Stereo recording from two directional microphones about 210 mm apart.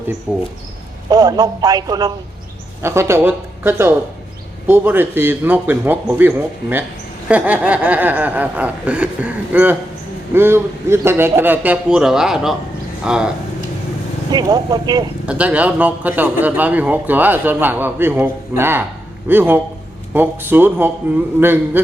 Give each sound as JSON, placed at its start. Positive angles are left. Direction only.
{"t": 0.3, "sound": "chuckle", "side_deg": -10}
{"t": 13.1, "sound": "speech", "side_deg": -5}
{"t": 14.3, "sound": "speech", "side_deg": -20}
{"t": 15.3, "sound": "chuckle", "side_deg": -5}